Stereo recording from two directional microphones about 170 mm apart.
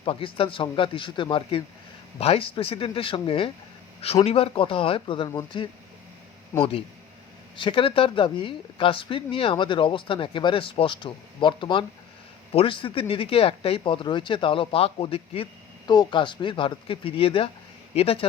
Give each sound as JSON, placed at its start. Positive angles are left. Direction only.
{"t": 0.0, "sound": "a woman's voice", "side_deg": 30}